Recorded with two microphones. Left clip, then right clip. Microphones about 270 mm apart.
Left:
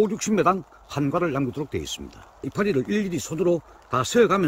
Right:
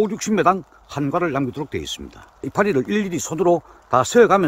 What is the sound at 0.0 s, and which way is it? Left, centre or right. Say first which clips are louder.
A man's voice: right 3 dB; centre.